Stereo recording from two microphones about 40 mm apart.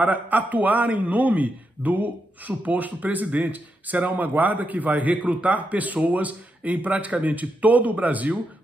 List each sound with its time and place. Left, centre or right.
0.0 s a man's voice: right